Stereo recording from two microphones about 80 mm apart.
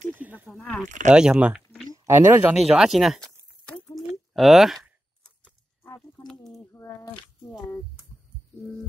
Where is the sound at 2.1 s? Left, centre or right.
Right.